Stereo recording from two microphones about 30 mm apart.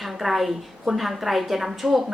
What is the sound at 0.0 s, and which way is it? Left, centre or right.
A woman's voice, centre.